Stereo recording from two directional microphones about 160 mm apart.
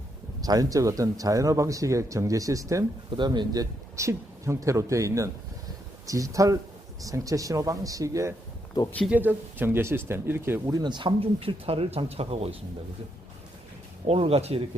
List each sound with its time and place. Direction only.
0.4 s speech: 20° right (ahead or behind); by 12.5 s 40° right (ahead or behind)
14.1 s speech: 35° right (ahead or behind)